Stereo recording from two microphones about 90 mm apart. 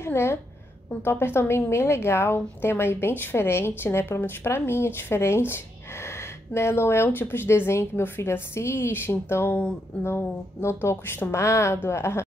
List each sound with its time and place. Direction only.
0.0 s a woman's voice: 30° left (ahead or behind)